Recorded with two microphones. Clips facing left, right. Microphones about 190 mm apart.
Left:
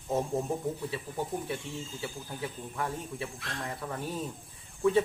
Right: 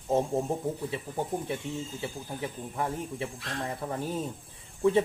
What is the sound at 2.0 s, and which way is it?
Speech, 25° right (ahead or behind).